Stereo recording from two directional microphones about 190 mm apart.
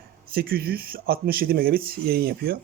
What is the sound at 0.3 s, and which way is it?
Speech, 50° right (ahead or behind).